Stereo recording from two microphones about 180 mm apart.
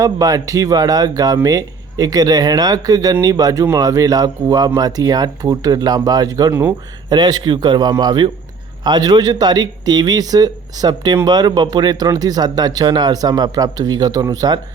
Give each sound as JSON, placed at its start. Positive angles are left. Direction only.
{"t": 0.0, "sound": "speech", "side_deg": -20}